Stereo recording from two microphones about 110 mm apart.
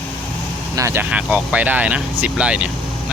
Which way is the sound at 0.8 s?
25° right (ahead or behind).